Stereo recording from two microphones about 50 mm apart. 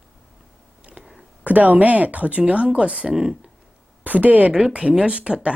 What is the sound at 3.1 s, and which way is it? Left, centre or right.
Speech, centre.